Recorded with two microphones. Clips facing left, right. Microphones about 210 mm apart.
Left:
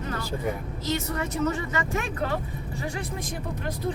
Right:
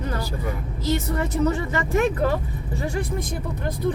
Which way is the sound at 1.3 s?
35° right (ahead or behind).